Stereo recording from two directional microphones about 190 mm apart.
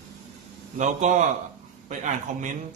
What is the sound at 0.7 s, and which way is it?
Speech, 40° right (ahead or behind).